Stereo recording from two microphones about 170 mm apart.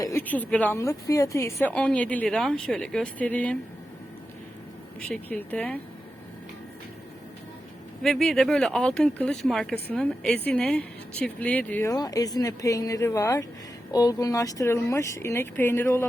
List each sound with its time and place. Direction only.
0.0 s a woman's voice: 15° left (ahead or behind)
4.9 s a woman's voice: 5° left (ahead or behind)
8.0 s a woman's voice: centre (ahead or behind)
11.9 s a woman's voice: 20° left (ahead or behind)